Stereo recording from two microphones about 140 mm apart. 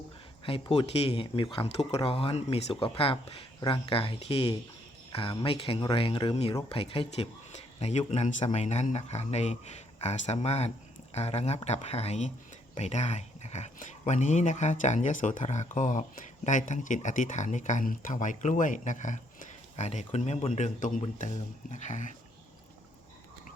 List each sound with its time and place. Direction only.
0.4 s speech: 40° left (ahead or behind); by 22.1 s 60° left (ahead or behind)